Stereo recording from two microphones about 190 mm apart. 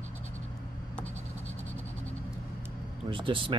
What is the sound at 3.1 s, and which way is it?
Speech, 25° right (ahead or behind).